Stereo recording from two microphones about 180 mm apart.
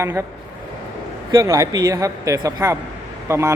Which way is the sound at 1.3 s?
20° right (ahead or behind).